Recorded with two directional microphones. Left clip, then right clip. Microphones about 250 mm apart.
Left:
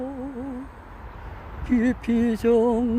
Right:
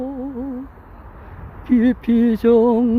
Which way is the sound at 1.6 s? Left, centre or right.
Centre.